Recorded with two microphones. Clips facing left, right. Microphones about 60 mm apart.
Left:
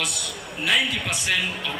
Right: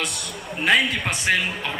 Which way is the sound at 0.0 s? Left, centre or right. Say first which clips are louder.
Right 1 dB; right.